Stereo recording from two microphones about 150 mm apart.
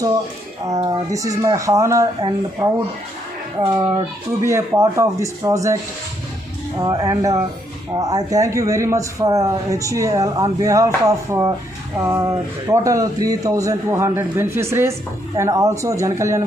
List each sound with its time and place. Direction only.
0.9 s a man's voice: 20° right (ahead or behind)
6.7 s a man's voice: 25° right (ahead or behind)